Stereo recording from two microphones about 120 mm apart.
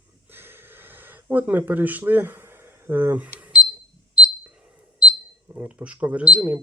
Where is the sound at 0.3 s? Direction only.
20° right (ahead or behind).